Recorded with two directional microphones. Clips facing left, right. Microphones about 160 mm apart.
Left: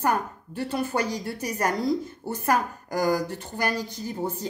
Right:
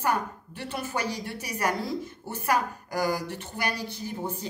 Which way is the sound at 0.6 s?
35° left (ahead or behind).